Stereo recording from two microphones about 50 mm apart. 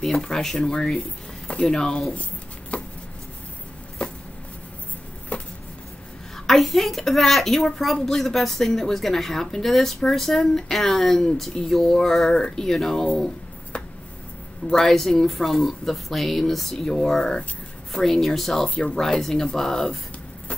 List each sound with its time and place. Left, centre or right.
0.0 s a woman's voice: centre
2.7 s chopping: left
4.0 s a sound: left
5.3 s a sound: left
6.3 s a woman's voice: centre
14.7 s a woman's voice: centre